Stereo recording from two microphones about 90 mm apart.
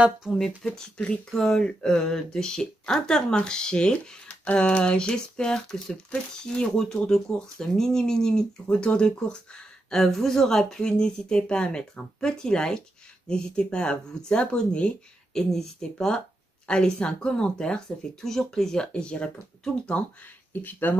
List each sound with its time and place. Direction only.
0.7 s speech: 10° left (ahead or behind)